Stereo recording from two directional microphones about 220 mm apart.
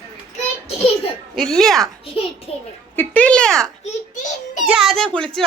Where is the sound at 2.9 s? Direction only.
5° left (ahead or behind).